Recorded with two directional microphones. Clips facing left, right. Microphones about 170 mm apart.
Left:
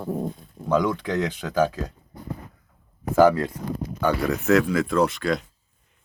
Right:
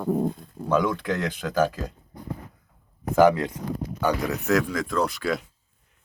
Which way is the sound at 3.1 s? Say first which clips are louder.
Left 1 dB; 15° right (ahead or behind).